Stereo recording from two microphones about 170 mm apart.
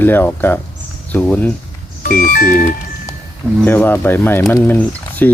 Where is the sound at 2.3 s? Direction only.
55° left (ahead or behind).